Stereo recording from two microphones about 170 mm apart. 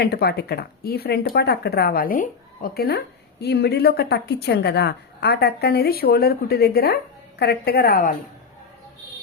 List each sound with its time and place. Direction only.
0.0 s a woman's voice: 70° left (ahead or behind)